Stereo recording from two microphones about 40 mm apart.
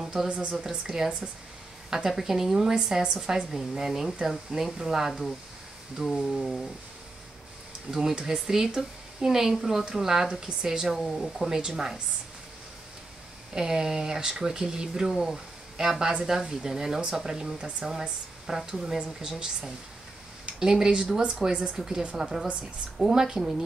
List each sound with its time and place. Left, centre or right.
0.3 s speech: right; by 2.7 s centre
2.7 s speech: right
6.3 s a sound: centre
7.9 s speech: centre
13.5 s speech: centre
18.7 s speech: centre
22.1 s speech: centre